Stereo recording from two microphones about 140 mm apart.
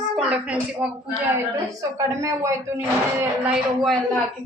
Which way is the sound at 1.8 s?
20° right (ahead or behind).